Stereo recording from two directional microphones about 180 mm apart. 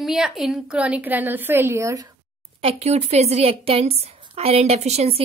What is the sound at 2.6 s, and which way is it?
A woman's voice, 35° right (ahead or behind).